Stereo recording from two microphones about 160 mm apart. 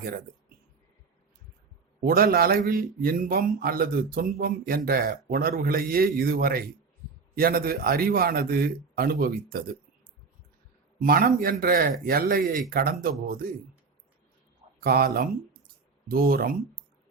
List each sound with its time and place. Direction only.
2.0 s a man's voice: 70° right (ahead or behind)
11.0 s a man's voice: 65° right (ahead or behind)
14.8 s a man's voice: 70° right (ahead or behind)